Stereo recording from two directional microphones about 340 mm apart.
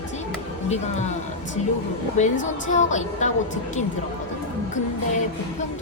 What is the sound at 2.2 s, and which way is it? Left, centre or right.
A woman's voice, left.